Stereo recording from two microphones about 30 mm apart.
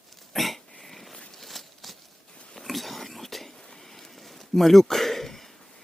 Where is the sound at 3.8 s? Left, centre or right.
Centre.